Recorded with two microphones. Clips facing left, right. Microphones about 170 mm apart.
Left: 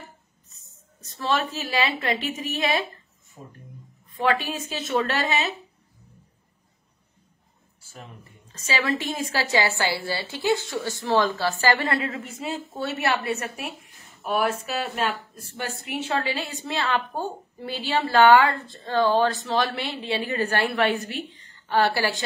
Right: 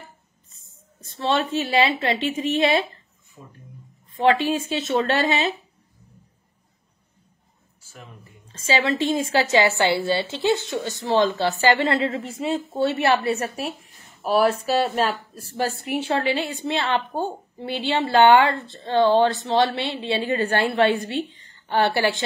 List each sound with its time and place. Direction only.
1.1 s a woman's voice: 25° right (ahead or behind)
4.1 s a sound: 25° right (ahead or behind)
4.5 s a woman's voice: 30° right (ahead or behind)
8.5 s a woman's voice: 30° right (ahead or behind)